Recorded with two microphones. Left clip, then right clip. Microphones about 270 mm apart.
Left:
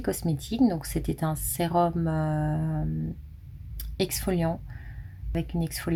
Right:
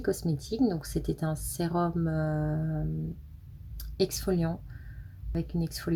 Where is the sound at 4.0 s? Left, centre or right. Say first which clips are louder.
Left 1 dB; left.